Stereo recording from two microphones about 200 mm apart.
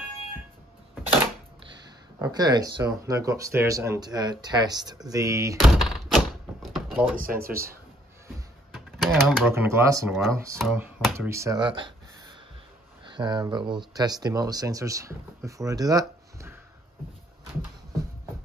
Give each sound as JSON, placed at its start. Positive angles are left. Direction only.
{"t": 2.1, "sound": "speech", "side_deg": -20}
{"t": 5.6, "sound": "a sound", "side_deg": 0}
{"t": 7.2, "sound": "speech", "side_deg": -45}
{"t": 8.7, "sound": "typewriter", "side_deg": 0}
{"t": 9.5, "sound": "speech", "side_deg": -15}
{"t": 10.6, "sound": "speech", "side_deg": 0}